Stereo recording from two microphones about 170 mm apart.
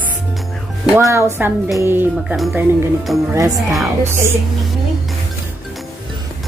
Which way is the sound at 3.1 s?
Centre (ahead or behind).